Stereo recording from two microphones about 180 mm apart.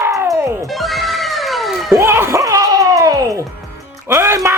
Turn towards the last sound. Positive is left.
turn(degrees=-15)  # may be behind; listen again after turning